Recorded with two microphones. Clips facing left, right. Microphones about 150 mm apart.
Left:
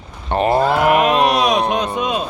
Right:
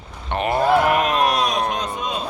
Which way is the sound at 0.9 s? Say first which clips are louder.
Left 4 dB; 75° left (ahead or behind).